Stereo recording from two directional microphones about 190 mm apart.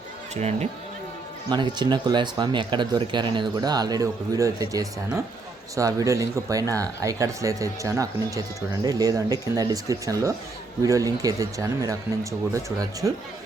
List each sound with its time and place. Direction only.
0.3 s speech: 35° right (ahead or behind)
1.5 s speech: 25° right (ahead or behind)